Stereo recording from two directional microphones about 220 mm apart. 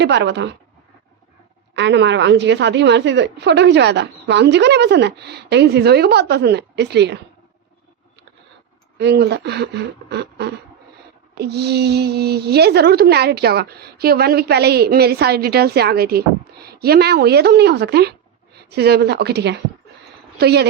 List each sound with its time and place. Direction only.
0.0 s a woman's voice: 50° right (ahead or behind)
1.7 s a woman's voice: 55° right (ahead or behind)
9.0 s a woman's voice: 50° right (ahead or behind)